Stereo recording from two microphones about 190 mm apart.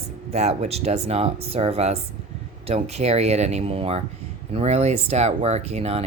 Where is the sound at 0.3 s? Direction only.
35° right (ahead or behind).